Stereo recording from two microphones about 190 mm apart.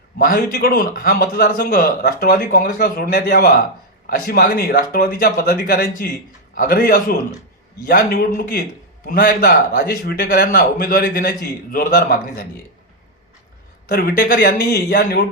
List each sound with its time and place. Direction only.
0.2 s a man's voice: 50° left (ahead or behind)
13.8 s a man's voice: 50° left (ahead or behind)